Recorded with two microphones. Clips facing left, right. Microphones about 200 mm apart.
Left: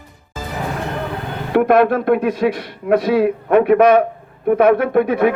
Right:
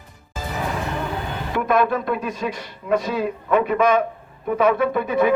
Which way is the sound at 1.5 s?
60° left (ahead or behind).